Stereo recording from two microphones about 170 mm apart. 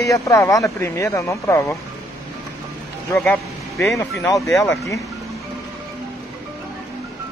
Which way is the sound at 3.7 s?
15° left (ahead or behind).